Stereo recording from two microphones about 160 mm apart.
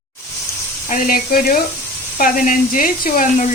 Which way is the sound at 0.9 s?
55° left (ahead or behind).